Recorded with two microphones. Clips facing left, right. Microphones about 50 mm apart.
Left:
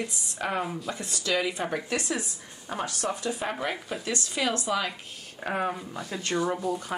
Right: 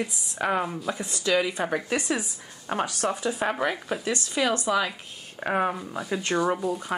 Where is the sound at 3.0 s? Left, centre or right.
Centre.